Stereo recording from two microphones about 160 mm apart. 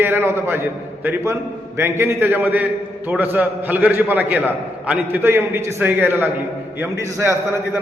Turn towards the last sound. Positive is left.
turn(degrees=-15)  # may be behind; listen again after turning